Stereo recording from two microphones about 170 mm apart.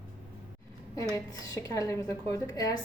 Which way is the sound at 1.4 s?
20° left (ahead or behind).